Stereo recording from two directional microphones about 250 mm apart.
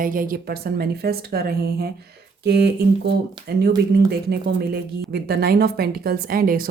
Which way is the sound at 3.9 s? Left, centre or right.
Right.